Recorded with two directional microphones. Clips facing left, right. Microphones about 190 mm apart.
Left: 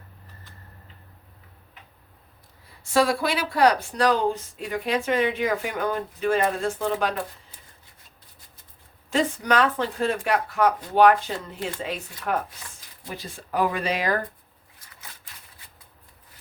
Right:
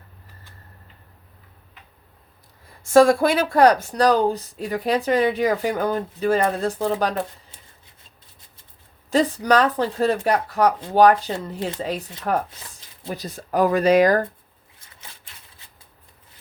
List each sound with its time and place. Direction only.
2.6 s speech: 45° right (ahead or behind); by 7.1 s 30° right (ahead or behind)
9.0 s speech: 35° right (ahead or behind)